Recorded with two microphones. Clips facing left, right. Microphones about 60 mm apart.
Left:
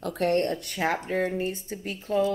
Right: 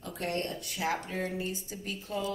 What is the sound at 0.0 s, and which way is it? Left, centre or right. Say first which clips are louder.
Speech: left 10 dB; left.